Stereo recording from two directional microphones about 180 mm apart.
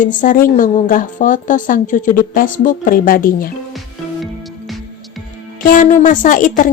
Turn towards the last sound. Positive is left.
turn(degrees=45)  # may be behind; listen again after turning